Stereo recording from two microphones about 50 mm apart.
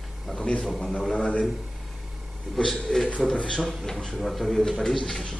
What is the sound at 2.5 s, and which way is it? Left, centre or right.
A man's voice, centre.